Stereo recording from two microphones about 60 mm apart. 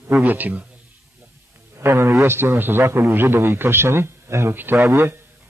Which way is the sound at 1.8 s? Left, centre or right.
Right.